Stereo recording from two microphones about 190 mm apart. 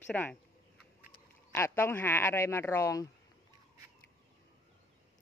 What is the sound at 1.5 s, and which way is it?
Speech, 15° left (ahead or behind).